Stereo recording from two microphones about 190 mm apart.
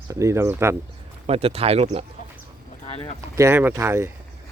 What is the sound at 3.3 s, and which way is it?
Speech, 10° right (ahead or behind).